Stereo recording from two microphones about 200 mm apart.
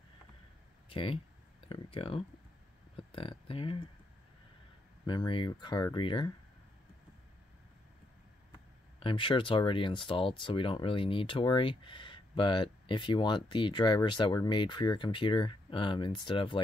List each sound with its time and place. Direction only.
0.8 s speech: 25° left (ahead or behind)
5.0 s speech: 25° left (ahead or behind)
9.0 s speech: 25° left (ahead or behind)